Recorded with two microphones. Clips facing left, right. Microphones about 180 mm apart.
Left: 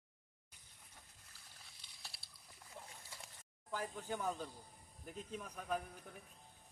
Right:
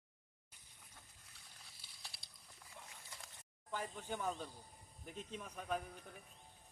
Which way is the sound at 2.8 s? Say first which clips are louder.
Left 4 dB; 40° left (ahead or behind).